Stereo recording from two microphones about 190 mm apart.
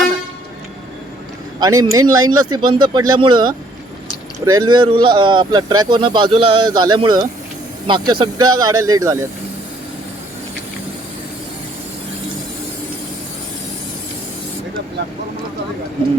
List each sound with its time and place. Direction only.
1.5 s speech: 20° right (ahead or behind)